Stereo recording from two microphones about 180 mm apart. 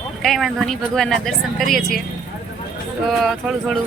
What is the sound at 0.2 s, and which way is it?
Speech, centre (ahead or behind).